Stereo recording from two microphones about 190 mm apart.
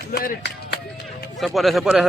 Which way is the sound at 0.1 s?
50° left (ahead or behind).